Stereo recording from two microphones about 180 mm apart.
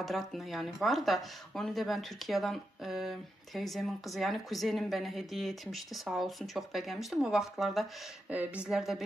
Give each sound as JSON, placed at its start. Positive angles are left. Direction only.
{"t": 0.0, "sound": "speech", "side_deg": 0}